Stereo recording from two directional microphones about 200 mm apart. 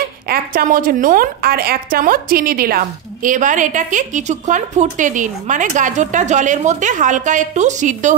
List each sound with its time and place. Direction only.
0.6 s a woman's voice: 45° right (ahead or behind)